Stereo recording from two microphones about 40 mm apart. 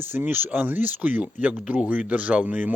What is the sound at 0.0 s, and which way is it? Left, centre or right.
Speech, right.